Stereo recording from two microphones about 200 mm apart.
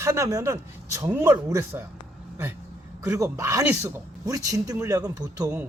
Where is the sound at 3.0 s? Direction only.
15° right (ahead or behind).